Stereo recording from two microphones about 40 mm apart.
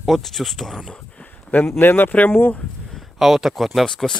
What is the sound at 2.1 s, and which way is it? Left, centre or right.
Speech, left.